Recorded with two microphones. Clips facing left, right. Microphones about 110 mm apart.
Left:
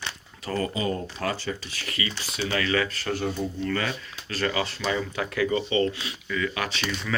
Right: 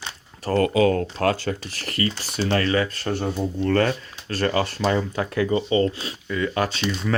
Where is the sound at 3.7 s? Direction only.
50° right (ahead or behind); by 7.1 s 30° right (ahead or behind).